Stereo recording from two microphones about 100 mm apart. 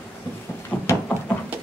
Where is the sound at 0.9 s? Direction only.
25° left (ahead or behind).